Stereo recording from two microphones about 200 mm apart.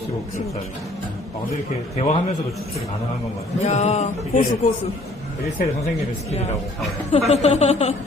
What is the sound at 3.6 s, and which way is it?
Speech, 35° left (ahead or behind).